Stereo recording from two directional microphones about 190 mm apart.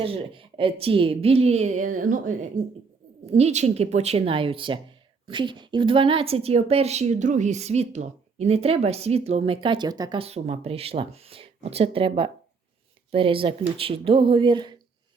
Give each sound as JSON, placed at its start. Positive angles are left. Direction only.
{"t": 0.0, "sound": "a woman's voice", "side_deg": -30}